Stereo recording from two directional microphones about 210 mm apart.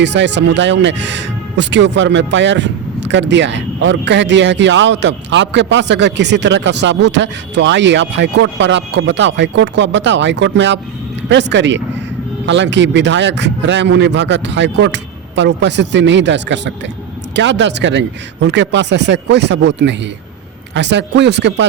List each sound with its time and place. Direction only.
0.0 s speech: 55° right (ahead or behind)